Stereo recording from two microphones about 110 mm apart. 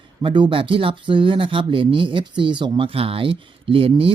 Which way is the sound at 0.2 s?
50° right (ahead or behind).